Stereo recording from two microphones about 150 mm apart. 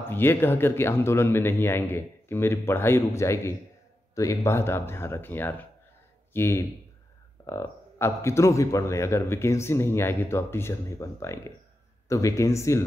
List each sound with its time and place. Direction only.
0.1 s speech: 15° left (ahead or behind)